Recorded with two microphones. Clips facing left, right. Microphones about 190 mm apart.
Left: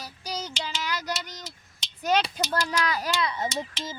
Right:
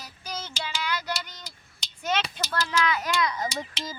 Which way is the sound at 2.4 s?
15° left (ahead or behind).